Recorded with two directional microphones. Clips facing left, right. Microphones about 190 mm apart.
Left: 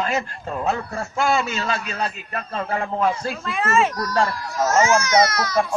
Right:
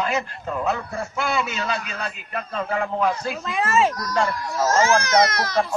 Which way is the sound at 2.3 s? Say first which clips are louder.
Even; 45° left (ahead or behind).